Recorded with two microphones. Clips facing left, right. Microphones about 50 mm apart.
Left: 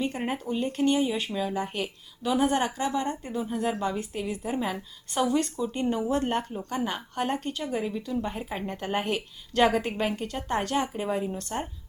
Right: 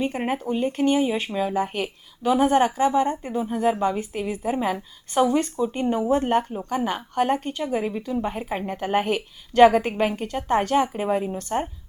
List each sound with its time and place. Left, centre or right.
0.0 s speech: centre
7.9 s speech: right